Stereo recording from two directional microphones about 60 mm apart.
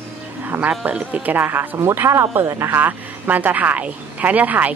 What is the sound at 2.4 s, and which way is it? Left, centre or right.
Speech, right.